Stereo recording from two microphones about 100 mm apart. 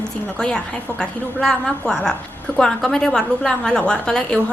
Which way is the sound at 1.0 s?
5° left (ahead or behind).